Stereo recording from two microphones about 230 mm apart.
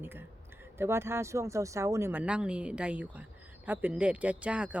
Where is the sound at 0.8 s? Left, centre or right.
Centre.